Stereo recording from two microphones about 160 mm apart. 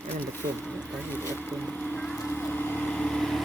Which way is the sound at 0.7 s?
15° left (ahead or behind).